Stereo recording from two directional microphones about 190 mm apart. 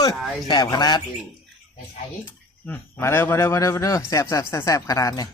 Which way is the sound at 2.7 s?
10° left (ahead or behind).